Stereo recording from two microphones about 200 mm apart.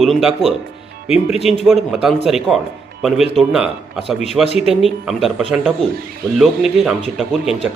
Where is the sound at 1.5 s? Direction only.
35° left (ahead or behind).